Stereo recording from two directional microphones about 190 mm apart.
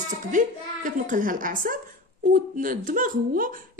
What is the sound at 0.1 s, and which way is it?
Speech, 40° right (ahead or behind).